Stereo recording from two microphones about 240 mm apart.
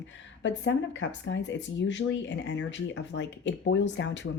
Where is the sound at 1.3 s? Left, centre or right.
Left.